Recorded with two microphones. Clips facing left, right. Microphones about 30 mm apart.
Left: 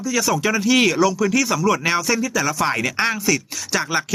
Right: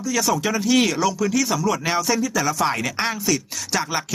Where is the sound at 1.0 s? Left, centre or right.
Left.